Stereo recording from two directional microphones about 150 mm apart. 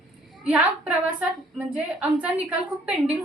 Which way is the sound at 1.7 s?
5° right (ahead or behind).